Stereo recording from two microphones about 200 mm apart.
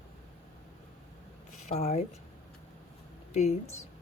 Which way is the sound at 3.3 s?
35° left (ahead or behind).